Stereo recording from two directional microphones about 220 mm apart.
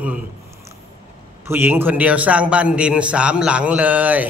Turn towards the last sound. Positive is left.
turn(degrees=-5)  # may be behind; listen again after turning